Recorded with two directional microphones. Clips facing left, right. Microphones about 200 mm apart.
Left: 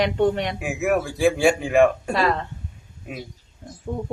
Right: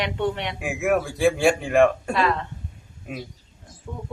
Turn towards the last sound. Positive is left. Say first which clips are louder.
# left 7 dB
turn(degrees=35)  # may be behind; listen again after turning